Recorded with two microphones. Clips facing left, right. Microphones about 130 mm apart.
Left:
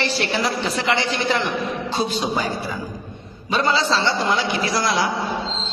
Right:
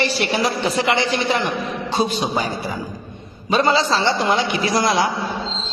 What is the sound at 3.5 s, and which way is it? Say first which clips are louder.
Speech: right 3 dB; 15° right (ahead or behind).